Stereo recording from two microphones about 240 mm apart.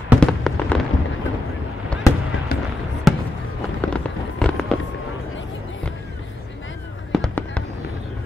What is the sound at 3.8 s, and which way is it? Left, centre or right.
Fireworks, centre.